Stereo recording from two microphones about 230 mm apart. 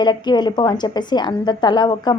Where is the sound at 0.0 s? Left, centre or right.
Centre.